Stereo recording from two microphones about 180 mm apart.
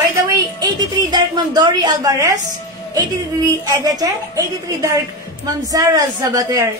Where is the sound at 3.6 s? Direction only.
20° right (ahead or behind).